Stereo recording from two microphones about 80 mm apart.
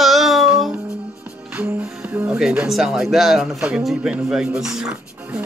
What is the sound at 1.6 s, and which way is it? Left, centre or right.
Music, centre.